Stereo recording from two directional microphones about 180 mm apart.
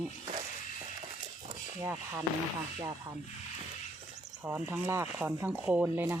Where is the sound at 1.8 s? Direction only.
15° right (ahead or behind).